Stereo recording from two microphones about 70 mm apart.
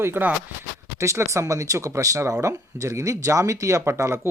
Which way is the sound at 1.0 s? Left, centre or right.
Right.